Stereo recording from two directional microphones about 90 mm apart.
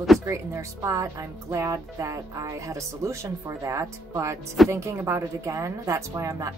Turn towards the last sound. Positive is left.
turn(degrees=-40)  # may be behind; listen again after turning